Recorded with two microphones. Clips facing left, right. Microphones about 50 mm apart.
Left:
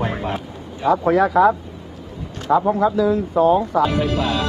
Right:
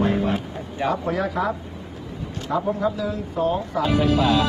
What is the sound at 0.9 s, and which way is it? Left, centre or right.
Speech, left.